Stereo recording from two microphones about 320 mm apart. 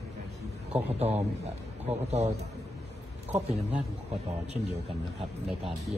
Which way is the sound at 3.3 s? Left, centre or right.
Right.